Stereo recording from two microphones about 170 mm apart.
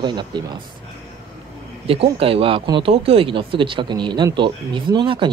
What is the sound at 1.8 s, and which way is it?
Speech, 35° right (ahead or behind).